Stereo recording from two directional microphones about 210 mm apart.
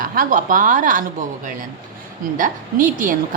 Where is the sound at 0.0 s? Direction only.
40° right (ahead or behind).